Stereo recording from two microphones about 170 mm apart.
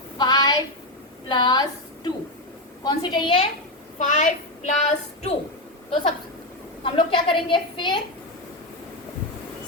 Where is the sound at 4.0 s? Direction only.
45° left (ahead or behind).